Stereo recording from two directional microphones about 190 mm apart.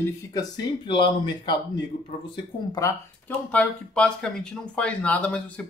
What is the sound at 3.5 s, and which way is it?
Speech, 5° left (ahead or behind).